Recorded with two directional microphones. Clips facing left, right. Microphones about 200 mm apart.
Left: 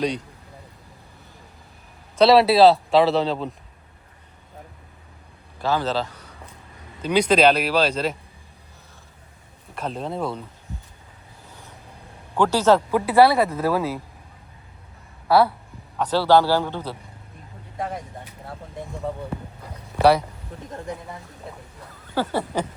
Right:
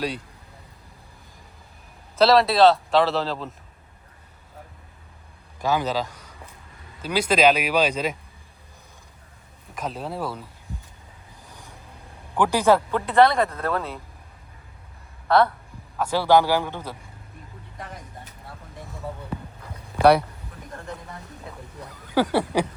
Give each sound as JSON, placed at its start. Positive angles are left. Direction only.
{"t": 2.1, "sound": "speech", "side_deg": 0}
{"t": 5.5, "sound": "a man's voice", "side_deg": -15}
{"t": 9.7, "sound": "speech", "side_deg": -5}
{"t": 11.4, "sound": "vehicle", "side_deg": -15}
{"t": 12.4, "sound": "speech", "side_deg": -15}
{"t": 12.9, "sound": "speech", "side_deg": 10}
{"t": 15.3, "sound": "speech", "side_deg": 5}
{"t": 16.0, "sound": "speech", "side_deg": -10}
{"t": 17.7, "sound": "speech", "side_deg": 50}
{"t": 22.1, "sound": "a sound", "side_deg": -90}